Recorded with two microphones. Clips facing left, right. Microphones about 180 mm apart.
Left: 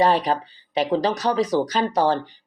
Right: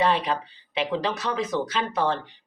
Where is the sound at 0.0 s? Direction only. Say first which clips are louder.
Left 4 dB; 40° left (ahead or behind).